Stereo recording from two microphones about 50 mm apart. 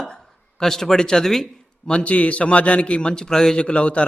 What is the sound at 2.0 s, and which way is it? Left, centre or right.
A man's voice, left.